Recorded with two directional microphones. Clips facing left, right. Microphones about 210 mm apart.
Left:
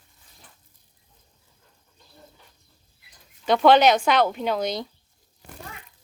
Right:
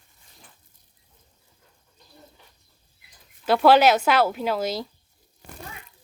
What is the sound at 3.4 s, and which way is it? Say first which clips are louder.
Speech: even; 5° right (ahead or behind).